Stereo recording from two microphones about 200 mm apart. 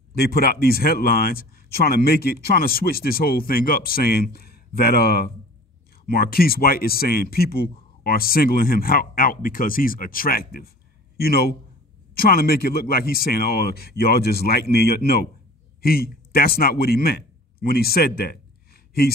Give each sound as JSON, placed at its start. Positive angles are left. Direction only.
{"t": 0.1, "sound": "a man's voice", "side_deg": 50}